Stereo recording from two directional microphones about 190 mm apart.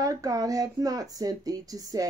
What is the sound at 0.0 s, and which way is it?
Speech, 20° right (ahead or behind).